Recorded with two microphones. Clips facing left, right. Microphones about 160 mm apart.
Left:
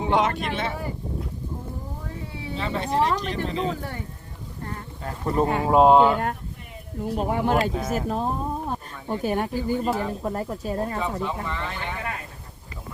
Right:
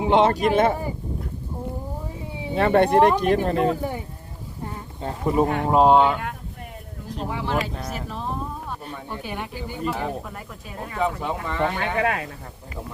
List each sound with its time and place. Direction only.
0.2 s speech: 35° right (ahead or behind)
2.6 s speech: 60° right (ahead or behind)
3.8 s speech: 10° right (ahead or behind)
5.2 s speech: 5° right (ahead or behind)
7.1 s speech: 50° left (ahead or behind)
7.7 s speech: centre (ahead or behind)
7.9 s speech: 40° left (ahead or behind)
11.0 s speech: 15° right (ahead or behind)
11.6 s speech: 60° right (ahead or behind); by 12.3 s 80° right